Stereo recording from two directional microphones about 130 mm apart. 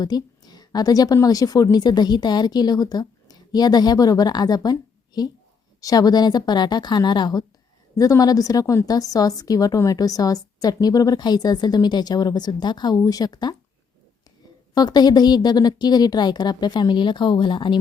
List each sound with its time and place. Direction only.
0.0 s a woman's voice: 30° left (ahead or behind)
14.8 s a woman's voice: 30° left (ahead or behind)